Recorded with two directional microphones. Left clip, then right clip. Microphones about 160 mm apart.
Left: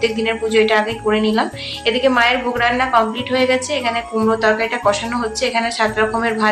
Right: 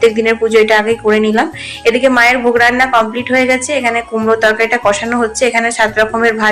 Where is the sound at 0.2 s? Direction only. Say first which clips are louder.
Right 6 dB; 20° right (ahead or behind).